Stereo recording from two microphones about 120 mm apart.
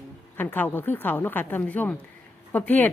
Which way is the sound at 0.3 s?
15° left (ahead or behind).